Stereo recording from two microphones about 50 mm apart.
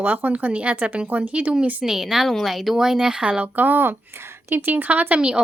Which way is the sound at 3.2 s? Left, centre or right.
Right.